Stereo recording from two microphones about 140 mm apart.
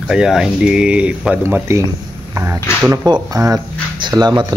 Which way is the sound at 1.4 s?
20° right (ahead or behind).